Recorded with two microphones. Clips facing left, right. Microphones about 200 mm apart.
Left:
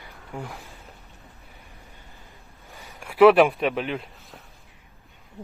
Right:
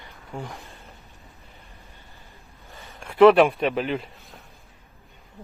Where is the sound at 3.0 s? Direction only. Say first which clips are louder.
Right 1 dB; 5° left (ahead or behind).